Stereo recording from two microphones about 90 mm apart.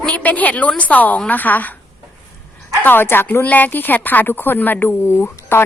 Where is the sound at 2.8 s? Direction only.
25° left (ahead or behind).